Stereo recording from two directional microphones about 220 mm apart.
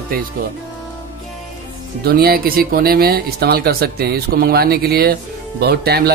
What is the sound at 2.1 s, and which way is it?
A man's voice, 45° right (ahead or behind).